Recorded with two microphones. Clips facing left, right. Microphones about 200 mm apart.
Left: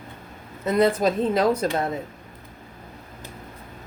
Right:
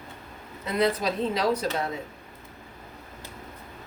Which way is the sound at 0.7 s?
50° left (ahead or behind).